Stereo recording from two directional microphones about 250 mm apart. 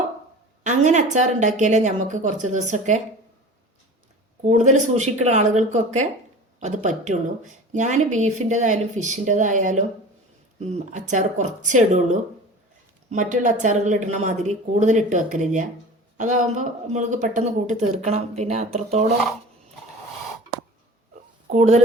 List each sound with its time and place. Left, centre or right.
0.6 s speech: right
4.4 s speech: right
21.5 s speech: right